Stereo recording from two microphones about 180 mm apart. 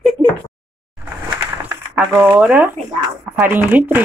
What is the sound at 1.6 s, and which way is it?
Speech, 10° right (ahead or behind).